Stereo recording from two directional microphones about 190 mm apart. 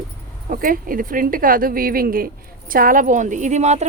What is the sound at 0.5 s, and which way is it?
Speech, 45° right (ahead or behind).